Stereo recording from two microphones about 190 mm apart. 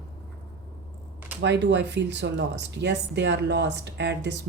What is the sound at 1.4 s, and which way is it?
Speech, 65° right (ahead or behind).